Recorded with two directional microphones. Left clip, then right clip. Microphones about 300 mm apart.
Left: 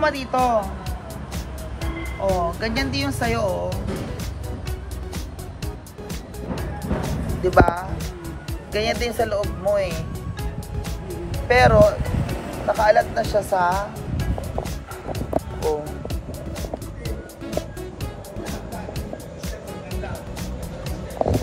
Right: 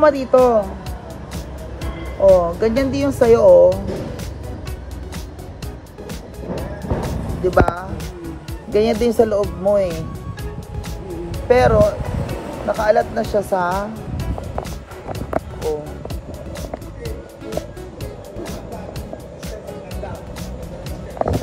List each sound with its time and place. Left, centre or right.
0.0 s speech: centre
1.8 s speech: centre
6.0 s music: centre
8.7 s speech: centre
11.4 s speech: centre
15.3 s music: centre
17.0 s music: centre
21.2 s music: left